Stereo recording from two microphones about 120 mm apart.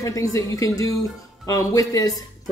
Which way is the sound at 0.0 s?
25° left (ahead or behind).